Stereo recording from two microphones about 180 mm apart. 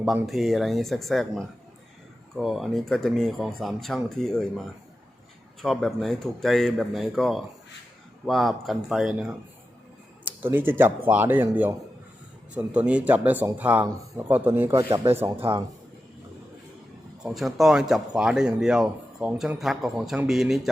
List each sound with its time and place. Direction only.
0.0 s speech: centre (ahead or behind)
5.6 s speech: centre (ahead or behind); by 15.3 s 15° right (ahead or behind)
15.4 s a man's voice: 30° right (ahead or behind)
17.2 s speech: centre (ahead or behind)